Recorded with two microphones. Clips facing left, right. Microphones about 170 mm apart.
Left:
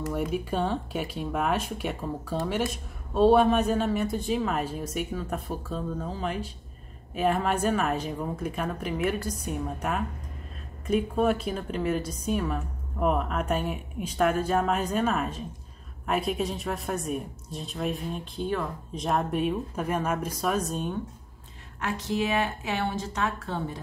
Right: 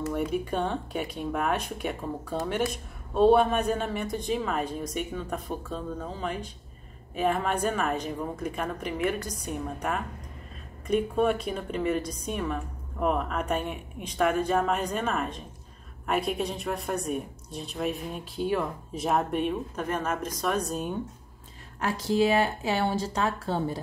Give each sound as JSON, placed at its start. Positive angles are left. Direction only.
{"t": 0.1, "sound": "a woman's voice", "side_deg": 5}
{"t": 21.7, "sound": "speech", "side_deg": -35}